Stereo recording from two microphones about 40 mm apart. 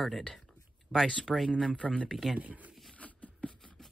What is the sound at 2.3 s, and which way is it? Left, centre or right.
Speech, right.